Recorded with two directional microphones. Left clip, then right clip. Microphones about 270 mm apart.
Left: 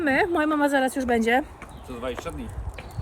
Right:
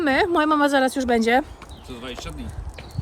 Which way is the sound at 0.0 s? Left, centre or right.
Centre.